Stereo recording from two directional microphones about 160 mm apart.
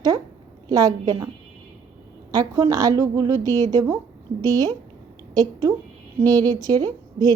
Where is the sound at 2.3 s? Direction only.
25° right (ahead or behind).